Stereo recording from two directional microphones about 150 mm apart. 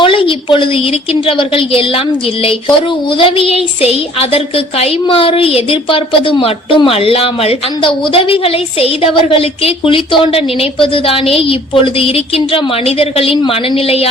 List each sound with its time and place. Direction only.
0.0 s a sound: 35° left (ahead or behind)
1.3 s a woman's voice: 40° left (ahead or behind)
3.2 s a woman's voice: 35° left (ahead or behind)